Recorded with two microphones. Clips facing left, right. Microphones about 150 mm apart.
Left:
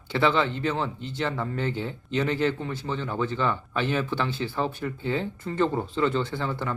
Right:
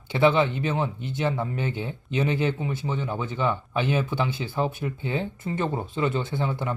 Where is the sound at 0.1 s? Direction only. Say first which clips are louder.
Right 3 dB; 15° right (ahead or behind).